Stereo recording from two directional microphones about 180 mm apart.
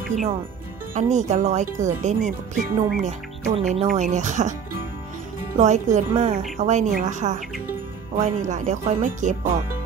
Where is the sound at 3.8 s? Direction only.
40° right (ahead or behind).